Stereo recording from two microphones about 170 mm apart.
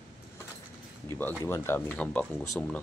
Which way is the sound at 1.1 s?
15° left (ahead or behind).